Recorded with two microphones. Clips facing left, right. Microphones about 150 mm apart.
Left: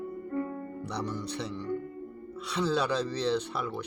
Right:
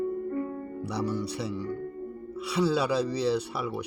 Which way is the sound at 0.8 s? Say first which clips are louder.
Right 6 dB; 5° right (ahead or behind).